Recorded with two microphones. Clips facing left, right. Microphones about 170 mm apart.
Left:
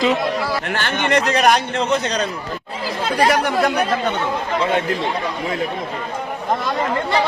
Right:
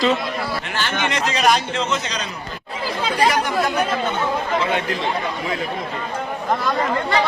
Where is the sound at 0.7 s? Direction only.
60° left (ahead or behind).